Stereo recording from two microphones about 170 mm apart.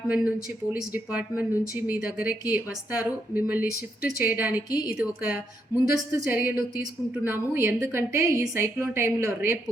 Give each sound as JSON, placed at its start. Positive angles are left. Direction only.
{"t": 0.1, "sound": "a woman's voice", "side_deg": -10}